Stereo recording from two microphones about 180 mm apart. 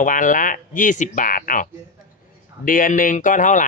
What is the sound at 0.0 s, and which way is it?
Speech, 45° left (ahead or behind).